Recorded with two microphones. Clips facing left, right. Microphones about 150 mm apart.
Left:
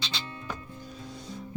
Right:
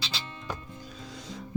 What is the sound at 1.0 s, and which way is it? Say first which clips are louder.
Music: left 1 dB; 90° right.